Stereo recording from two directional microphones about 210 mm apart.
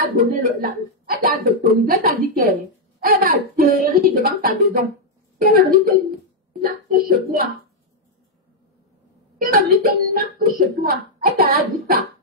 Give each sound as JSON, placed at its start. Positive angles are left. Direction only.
{"t": 0.0, "sound": "speech", "side_deg": -40}
{"t": 9.4, "sound": "speech", "side_deg": -45}